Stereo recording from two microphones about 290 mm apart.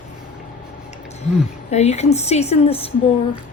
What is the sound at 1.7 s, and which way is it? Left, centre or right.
A woman's voice, left.